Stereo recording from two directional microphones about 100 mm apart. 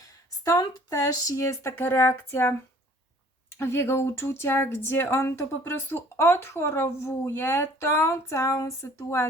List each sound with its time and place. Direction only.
0.0 s speech: 35° left (ahead or behind)